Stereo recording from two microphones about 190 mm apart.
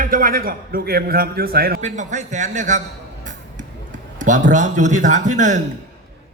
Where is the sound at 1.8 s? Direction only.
40° right (ahead or behind).